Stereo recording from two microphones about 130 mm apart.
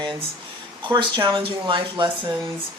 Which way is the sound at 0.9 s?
40° right (ahead or behind).